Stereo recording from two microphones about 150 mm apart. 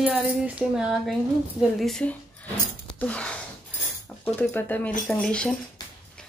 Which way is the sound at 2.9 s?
5° left (ahead or behind).